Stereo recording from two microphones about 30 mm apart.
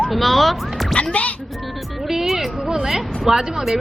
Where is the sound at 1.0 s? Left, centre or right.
Left.